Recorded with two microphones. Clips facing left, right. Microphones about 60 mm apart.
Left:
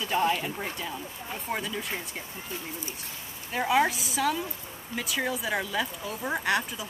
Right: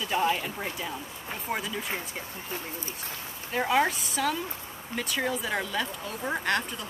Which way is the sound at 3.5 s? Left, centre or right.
Centre.